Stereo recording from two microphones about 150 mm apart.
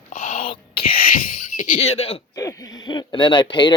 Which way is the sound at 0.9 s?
70° left (ahead or behind).